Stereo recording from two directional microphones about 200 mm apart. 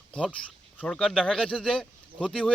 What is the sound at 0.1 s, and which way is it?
Speech, 5° left (ahead or behind).